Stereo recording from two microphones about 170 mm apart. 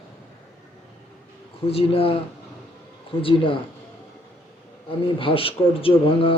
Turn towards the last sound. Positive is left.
turn(degrees=30)  # may be behind; listen again after turning